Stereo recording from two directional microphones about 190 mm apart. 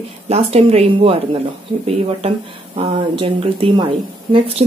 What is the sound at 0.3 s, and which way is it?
A woman's voice, 30° right (ahead or behind).